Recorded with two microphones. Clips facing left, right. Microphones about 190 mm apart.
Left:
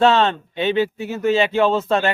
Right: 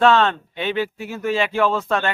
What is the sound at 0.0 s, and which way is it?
Speech, 30° left (ahead or behind).